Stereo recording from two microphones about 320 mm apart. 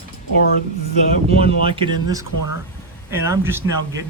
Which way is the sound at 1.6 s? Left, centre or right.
Centre.